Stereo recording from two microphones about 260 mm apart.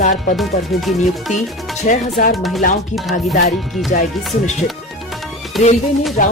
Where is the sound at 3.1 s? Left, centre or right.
Left.